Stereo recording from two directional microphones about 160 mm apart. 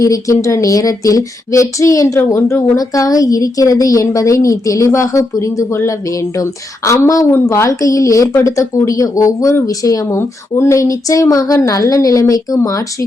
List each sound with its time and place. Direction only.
0.0 s a woman's voice: 20° left (ahead or behind)